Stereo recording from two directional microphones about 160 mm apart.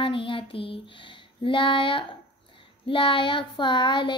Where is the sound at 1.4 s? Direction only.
30° left (ahead or behind).